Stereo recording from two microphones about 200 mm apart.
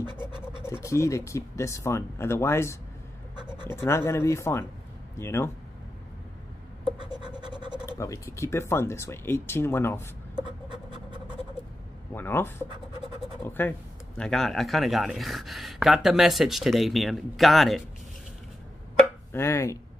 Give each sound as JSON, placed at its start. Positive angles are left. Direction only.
{"t": 0.7, "sound": "speech", "side_deg": 15}
{"t": 7.1, "sound": "scratch", "side_deg": -20}
{"t": 8.0, "sound": "speech", "side_deg": 15}
{"t": 12.1, "sound": "speech", "side_deg": 10}
{"t": 19.3, "sound": "speech", "side_deg": 10}